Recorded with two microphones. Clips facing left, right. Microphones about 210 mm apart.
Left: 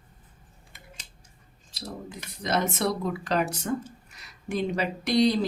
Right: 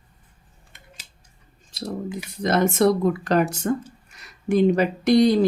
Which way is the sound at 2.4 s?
55° right (ahead or behind).